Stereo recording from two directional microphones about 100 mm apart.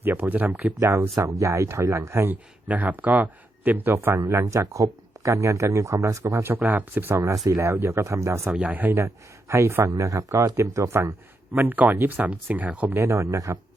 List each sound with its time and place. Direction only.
0.0 s speech: 20° right (ahead or behind)
0.8 s speech: 30° right (ahead or behind)
6.6 s speech: 20° right (ahead or behind)
8.4 s speech: 15° right (ahead or behind)
13.0 s speech: 30° right (ahead or behind)